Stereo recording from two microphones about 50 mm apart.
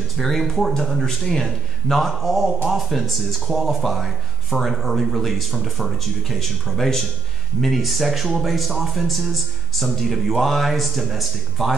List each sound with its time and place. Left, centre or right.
0.2 s speech: centre